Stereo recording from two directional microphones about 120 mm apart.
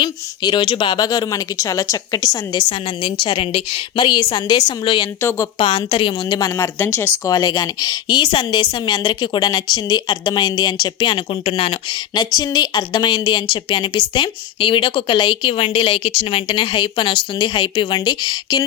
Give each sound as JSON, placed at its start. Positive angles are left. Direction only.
{"t": 0.0, "sound": "a woman's voice", "side_deg": 40}
{"t": 6.6, "sound": "speech", "side_deg": 20}
{"t": 7.3, "sound": "a woman's voice", "side_deg": 30}